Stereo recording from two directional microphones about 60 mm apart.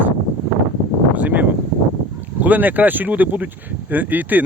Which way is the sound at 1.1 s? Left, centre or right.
Right.